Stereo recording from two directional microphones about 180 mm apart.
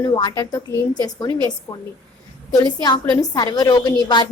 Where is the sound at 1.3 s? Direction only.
25° right (ahead or behind).